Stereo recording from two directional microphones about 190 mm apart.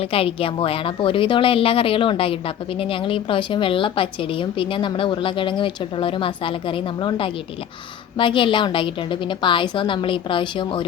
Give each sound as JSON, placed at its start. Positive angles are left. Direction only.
{"t": 0.1, "sound": "a woman's voice", "side_deg": 30}